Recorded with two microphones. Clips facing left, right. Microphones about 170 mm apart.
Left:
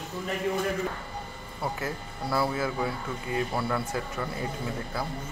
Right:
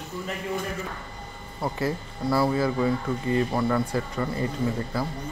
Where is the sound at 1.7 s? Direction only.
Centre (ahead or behind).